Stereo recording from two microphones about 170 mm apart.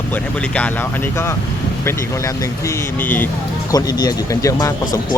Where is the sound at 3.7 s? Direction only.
20° left (ahead or behind).